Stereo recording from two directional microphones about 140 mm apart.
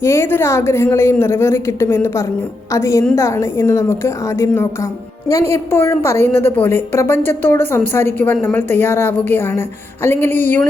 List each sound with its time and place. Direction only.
0.0 s a woman's voice: 20° left (ahead or behind)